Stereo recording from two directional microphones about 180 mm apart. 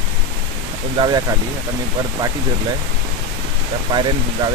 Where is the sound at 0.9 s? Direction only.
25° right (ahead or behind).